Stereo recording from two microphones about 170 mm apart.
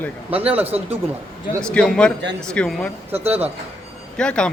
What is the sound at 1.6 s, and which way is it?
A man's voice, 5° left (ahead or behind).